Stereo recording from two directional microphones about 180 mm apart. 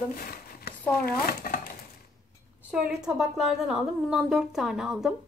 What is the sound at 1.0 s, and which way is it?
Speech, 50° left (ahead or behind).